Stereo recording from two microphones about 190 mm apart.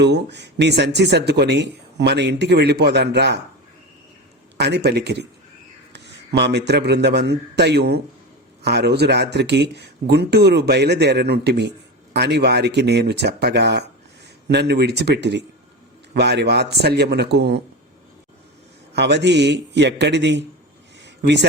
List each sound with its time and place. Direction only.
0.0 s a man's voice: 65° right (ahead or behind)
4.5 s a man's voice: 60° right (ahead or behind)
18.9 s a man's voice: 65° right (ahead or behind)
21.0 s a sound: 65° right (ahead or behind)